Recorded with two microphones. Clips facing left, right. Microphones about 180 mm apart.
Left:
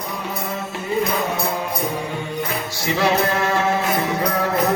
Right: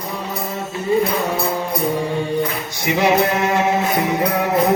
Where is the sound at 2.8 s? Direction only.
15° right (ahead or behind).